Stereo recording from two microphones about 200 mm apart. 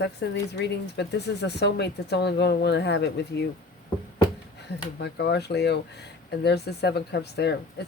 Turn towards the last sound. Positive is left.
turn(degrees=60)  # may be behind; listen again after turning